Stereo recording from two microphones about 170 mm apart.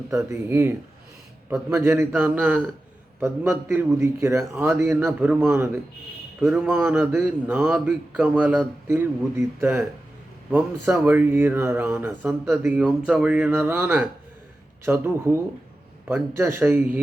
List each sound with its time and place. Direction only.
0.1 s a man's voice: 15° right (ahead or behind)